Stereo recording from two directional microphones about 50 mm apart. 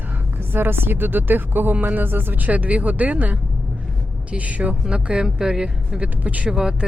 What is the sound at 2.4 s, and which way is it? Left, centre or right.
Speech, right.